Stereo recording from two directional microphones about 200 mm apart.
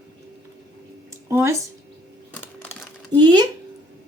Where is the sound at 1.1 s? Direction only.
15° right (ahead or behind).